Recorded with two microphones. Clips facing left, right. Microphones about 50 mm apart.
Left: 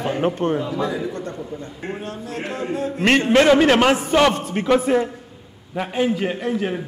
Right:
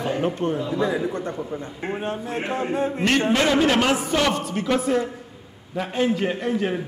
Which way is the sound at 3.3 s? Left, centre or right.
Left.